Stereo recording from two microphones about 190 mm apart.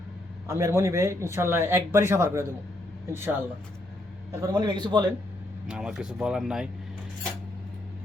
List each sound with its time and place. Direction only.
0.4 s a man's voice: 15° right (ahead or behind)
4.4 s a man's voice: 20° right (ahead or behind)
5.6 s speech: 5° right (ahead or behind)